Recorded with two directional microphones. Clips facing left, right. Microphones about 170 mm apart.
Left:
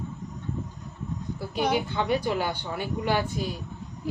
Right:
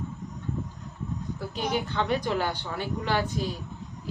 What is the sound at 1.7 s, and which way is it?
A woman's voice, 10° left (ahead or behind).